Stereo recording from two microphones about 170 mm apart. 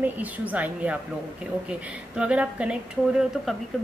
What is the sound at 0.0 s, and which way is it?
A woman's voice, 10° right (ahead or behind).